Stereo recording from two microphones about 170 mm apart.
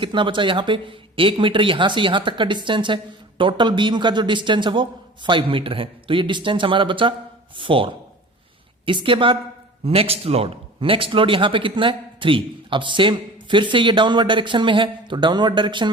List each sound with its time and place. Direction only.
0.0 s speech: 30° right (ahead or behind)
8.9 s speech: 30° right (ahead or behind)